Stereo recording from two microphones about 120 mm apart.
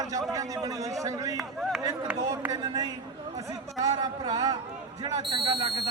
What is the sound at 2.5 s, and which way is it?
A man's voice, 35° right (ahead or behind).